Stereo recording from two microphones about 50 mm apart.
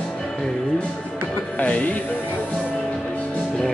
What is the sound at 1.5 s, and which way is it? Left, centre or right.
Music, left.